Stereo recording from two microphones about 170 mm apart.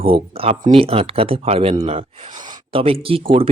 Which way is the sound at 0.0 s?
35° right (ahead or behind).